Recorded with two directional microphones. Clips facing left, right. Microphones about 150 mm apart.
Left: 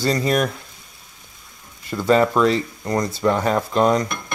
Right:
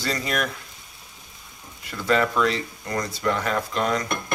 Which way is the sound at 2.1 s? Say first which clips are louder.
Left 5 dB; 35° left (ahead or behind).